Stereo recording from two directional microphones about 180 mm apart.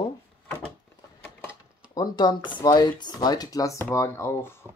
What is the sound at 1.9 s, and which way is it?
Speech, 20° left (ahead or behind).